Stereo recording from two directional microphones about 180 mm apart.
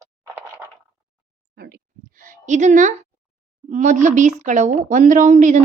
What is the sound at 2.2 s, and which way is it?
A woman's voice, 45° right (ahead or behind).